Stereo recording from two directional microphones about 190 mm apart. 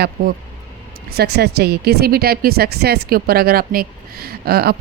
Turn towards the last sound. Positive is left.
turn(degrees=-55)  # may be behind; listen again after turning